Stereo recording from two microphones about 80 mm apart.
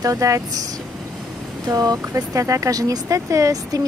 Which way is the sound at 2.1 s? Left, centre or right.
Right.